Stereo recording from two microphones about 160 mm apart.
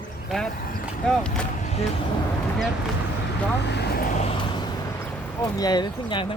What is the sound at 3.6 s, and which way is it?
Vehicle, 90° left.